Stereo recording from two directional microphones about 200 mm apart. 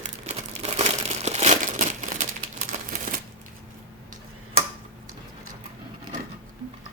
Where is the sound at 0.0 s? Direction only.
35° right (ahead or behind).